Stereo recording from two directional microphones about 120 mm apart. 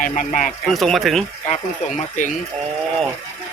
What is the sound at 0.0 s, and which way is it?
Speech, 80° left.